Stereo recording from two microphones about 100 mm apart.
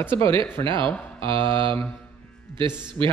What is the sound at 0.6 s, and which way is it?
Mantra, 60° right (ahead or behind).